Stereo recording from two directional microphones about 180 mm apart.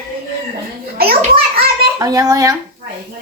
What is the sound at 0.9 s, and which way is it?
Speech, 60° right (ahead or behind).